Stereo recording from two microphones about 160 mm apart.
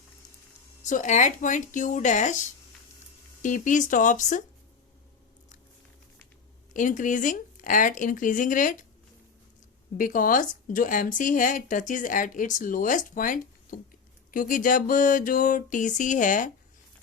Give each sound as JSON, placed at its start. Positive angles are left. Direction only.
{"t": 0.9, "sound": "speech", "side_deg": 50}
{"t": 6.7, "sound": "speech", "side_deg": 55}
{"t": 10.0, "sound": "speech", "side_deg": 55}